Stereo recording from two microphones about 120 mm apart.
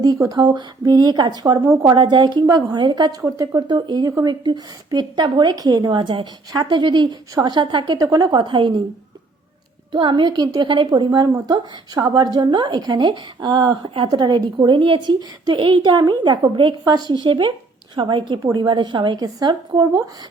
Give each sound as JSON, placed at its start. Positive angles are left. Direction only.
{"t": 0.0, "sound": "a woman's voice", "side_deg": -30}
{"t": 1.9, "sound": "a woman's voice", "side_deg": -40}
{"t": 9.9, "sound": "a woman's voice", "side_deg": -40}